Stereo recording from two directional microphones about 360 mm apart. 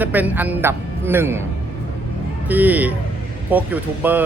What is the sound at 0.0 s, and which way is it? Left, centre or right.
Speech, centre.